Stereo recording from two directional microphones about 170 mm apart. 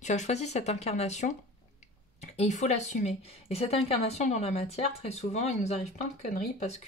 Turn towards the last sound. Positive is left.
turn(degrees=45)  # may be behind; listen again after turning